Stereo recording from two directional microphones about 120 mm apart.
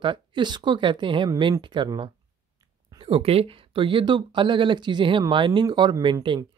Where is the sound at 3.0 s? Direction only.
50° right (ahead or behind).